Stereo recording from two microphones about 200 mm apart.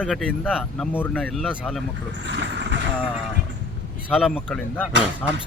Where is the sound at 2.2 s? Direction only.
60° right (ahead or behind).